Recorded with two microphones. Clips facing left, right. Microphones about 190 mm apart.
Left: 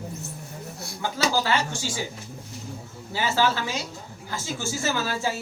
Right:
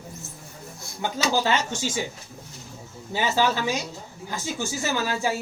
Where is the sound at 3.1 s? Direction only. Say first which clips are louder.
Right 1 dB; 20° right (ahead or behind).